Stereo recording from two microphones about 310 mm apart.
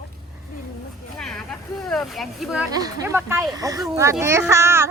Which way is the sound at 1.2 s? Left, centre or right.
Centre.